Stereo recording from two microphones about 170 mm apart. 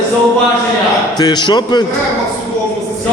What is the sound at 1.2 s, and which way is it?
Speech, 25° left (ahead or behind).